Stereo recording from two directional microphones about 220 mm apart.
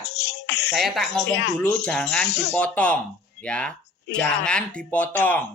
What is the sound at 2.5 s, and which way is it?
Speech, 5° left (ahead or behind).